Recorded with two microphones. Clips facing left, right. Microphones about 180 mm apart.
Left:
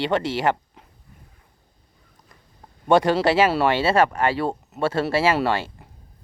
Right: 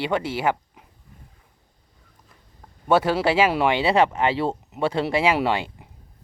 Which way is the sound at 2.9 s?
10° right (ahead or behind).